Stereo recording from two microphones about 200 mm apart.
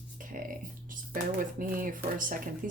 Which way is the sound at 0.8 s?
45° right (ahead or behind).